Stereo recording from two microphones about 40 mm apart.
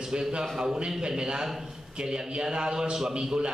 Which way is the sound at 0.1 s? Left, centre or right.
Centre.